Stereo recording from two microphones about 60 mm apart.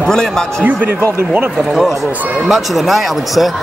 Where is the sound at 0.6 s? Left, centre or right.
Right.